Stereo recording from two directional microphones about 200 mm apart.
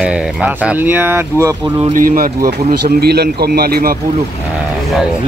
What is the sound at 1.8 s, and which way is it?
Speech, 40° right (ahead or behind).